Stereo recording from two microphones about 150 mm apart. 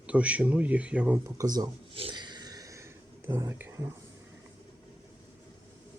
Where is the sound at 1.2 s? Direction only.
25° right (ahead or behind).